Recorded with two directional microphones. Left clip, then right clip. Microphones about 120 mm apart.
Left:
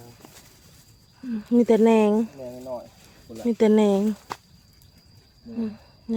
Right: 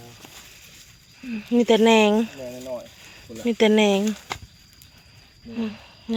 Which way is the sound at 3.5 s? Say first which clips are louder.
Right 1 dB; 30° left (ahead or behind).